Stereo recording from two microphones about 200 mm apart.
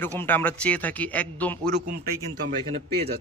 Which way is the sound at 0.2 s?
10° left (ahead or behind).